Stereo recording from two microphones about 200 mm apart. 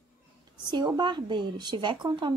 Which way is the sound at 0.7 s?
20° right (ahead or behind).